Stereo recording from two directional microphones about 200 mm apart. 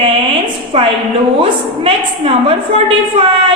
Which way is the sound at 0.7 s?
30° right (ahead or behind).